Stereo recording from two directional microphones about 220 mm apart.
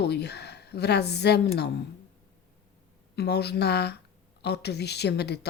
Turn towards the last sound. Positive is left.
turn(degrees=50)  # may be behind; listen again after turning